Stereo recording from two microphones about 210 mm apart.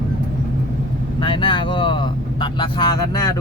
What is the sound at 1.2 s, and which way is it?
Speech, 25° left (ahead or behind).